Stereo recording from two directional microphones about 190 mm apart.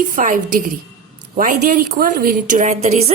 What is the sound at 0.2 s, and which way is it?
A woman's voice, 45° right (ahead or behind).